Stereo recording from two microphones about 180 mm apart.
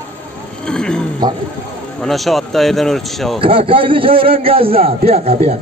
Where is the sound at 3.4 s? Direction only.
30° right (ahead or behind).